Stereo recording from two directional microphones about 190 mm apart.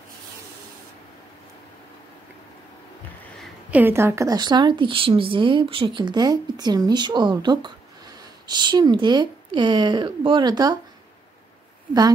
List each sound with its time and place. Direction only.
3.3 s speech: 10° right (ahead or behind)